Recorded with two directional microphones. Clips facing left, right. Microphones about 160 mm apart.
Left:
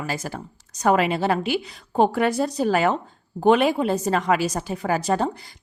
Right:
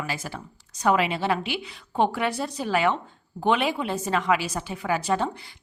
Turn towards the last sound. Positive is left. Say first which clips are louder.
# left 3 dB
turn(degrees=40)  # may be behind; listen again after turning